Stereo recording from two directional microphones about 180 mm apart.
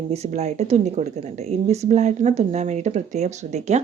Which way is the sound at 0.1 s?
35° right (ahead or behind).